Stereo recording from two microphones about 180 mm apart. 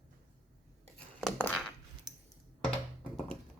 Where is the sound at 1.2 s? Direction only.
Centre (ahead or behind).